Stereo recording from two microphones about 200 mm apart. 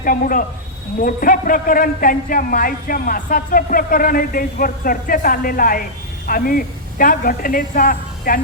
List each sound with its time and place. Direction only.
0.0 s a man's voice: 45° left (ahead or behind)